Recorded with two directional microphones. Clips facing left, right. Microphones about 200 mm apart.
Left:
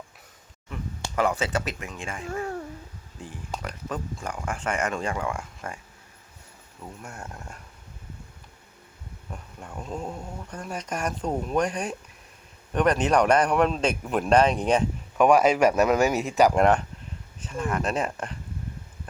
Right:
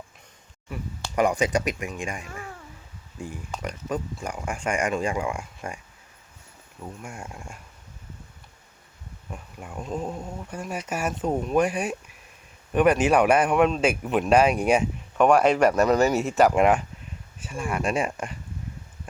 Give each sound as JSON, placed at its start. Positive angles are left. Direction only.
{"t": 1.1, "sound": "speech", "side_deg": -15}
{"t": 2.2, "sound": "speech", "side_deg": 40}
{"t": 3.2, "sound": "speech", "side_deg": -10}
{"t": 7.0, "sound": "speech", "side_deg": -10}
{"t": 9.3, "sound": "speech", "side_deg": -10}
{"t": 15.2, "sound": "speech", "side_deg": 0}
{"t": 16.1, "sound": "speech", "side_deg": 0}